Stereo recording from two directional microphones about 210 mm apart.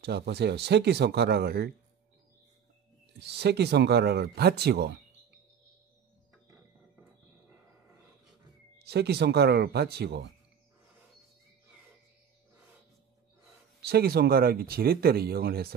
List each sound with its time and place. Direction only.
0.0 s speech: 50° right (ahead or behind)
3.2 s speech: 55° right (ahead or behind)
8.7 s speech: 50° right (ahead or behind)
13.8 s speech: 50° right (ahead or behind)